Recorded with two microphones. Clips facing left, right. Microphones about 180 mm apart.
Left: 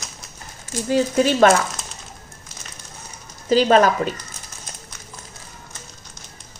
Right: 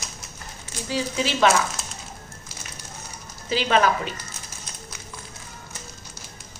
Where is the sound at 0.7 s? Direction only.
50° left (ahead or behind).